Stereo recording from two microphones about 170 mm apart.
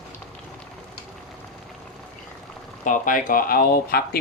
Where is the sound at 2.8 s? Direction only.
50° left (ahead or behind).